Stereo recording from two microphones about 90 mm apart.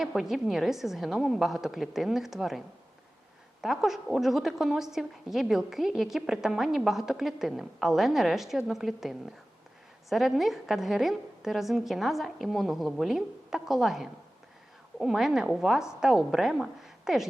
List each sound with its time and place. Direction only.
0.0 s a woman's voice: 5° right (ahead or behind)